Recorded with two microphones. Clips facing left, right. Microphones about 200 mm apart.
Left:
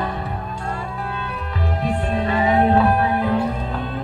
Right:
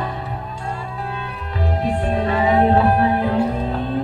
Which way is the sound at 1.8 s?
35° right (ahead or behind).